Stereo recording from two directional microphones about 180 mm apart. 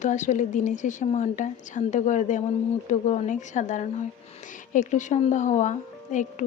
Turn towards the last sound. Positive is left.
turn(degrees=45)  # may be behind; listen again after turning